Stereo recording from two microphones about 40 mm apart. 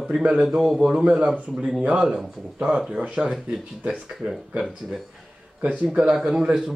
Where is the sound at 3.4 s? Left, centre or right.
Right.